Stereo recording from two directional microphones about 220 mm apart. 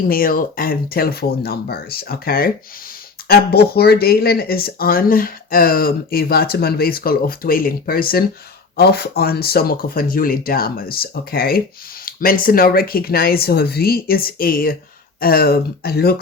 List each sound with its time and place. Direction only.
0.1 s speech: 40° left (ahead or behind)